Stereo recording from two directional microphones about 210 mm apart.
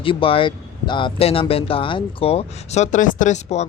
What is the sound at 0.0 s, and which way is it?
Speech, 25° left (ahead or behind).